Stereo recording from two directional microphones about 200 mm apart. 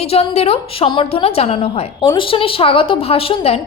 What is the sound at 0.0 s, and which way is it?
A woman's voice, 30° left (ahead or behind).